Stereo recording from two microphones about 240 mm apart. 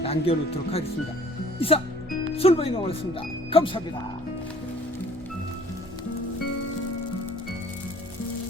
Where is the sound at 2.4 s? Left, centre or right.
Left.